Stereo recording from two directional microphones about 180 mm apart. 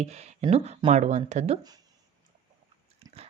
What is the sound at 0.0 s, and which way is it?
A woman's voice, 40° right (ahead or behind).